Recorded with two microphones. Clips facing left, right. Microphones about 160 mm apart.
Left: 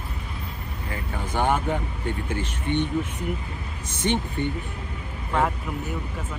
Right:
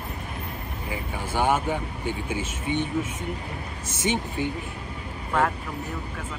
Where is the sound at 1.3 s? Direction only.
5° right (ahead or behind).